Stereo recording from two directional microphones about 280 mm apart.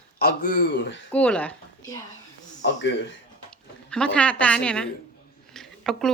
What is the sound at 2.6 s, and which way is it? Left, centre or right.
Speech, left.